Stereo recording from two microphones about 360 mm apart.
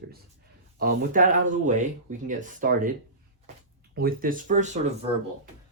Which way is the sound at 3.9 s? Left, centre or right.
Right.